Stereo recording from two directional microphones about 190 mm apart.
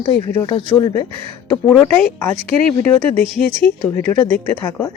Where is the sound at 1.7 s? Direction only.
10° left (ahead or behind).